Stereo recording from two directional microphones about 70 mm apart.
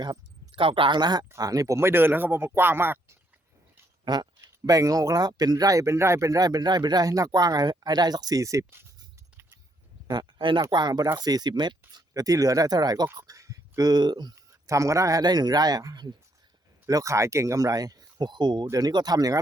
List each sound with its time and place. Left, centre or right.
0.9 s speech: right
1.4 s speech: right
4.0 s speech: right
4.6 s speech: right
10.1 s speech: right
11.2 s speech: right
11.9 s speech: right
13.1 s speech: right
14.3 s speech: right
15.2 s speech: right
16.9 s speech: right
18.8 s speech: right